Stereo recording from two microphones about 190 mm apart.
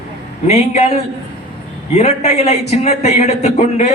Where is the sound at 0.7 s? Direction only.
35° left (ahead or behind).